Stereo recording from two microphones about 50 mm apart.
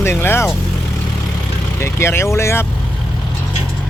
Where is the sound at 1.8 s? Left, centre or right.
Left.